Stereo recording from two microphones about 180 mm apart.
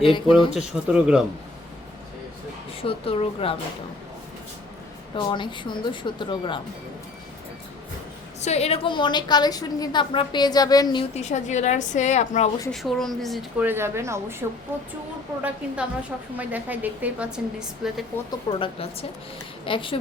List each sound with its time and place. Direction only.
0.0 s a woman's voice: 30° left (ahead or behind)
0.5 s speech: 5° right (ahead or behind)
2.8 s a woman's voice: 30° left (ahead or behind)
5.1 s a woman's voice: 25° left (ahead or behind)
8.4 s a woman's voice: 35° left (ahead or behind); by 11.0 s 20° left (ahead or behind)
11.1 s a woman's voice: 40° left (ahead or behind)
12.7 s speech: centre (ahead or behind)
13.7 s a woman's voice: 15° right (ahead or behind)
18.3 s a woman's voice: 30° left (ahead or behind)